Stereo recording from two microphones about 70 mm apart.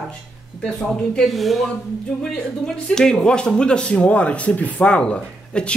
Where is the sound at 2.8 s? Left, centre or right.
Centre.